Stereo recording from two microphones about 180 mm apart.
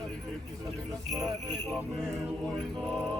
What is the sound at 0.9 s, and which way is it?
Speech, centre (ahead or behind).